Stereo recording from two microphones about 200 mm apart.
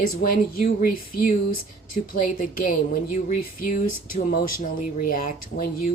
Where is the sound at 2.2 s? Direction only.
45° left (ahead or behind).